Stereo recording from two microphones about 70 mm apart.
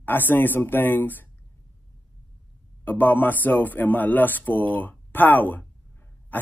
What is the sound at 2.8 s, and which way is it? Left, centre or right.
A man's voice, left.